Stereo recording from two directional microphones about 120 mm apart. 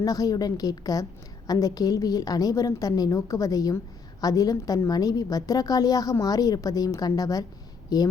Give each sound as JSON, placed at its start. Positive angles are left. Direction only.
{"t": 0.0, "sound": "a woman's voice", "side_deg": 30}